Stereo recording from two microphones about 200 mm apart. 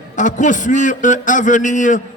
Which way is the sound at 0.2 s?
40° left (ahead or behind).